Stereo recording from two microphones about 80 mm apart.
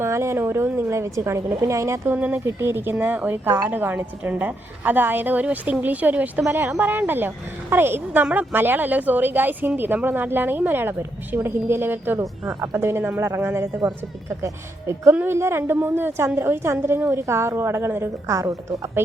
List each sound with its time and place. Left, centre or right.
0.0 s a woman's voice: right
2.1 s speech: right
2.4 s a woman's voice: right